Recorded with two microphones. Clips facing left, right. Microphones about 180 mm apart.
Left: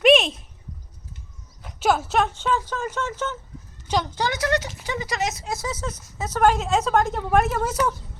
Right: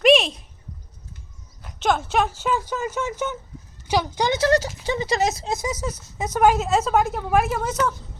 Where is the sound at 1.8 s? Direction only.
5° left (ahead or behind); by 5.5 s 30° right (ahead or behind).